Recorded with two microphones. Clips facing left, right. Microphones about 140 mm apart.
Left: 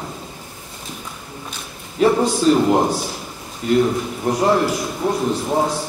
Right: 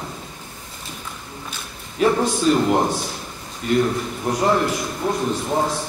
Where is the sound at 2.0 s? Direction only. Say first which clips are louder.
Left 3 dB; 5° left (ahead or behind).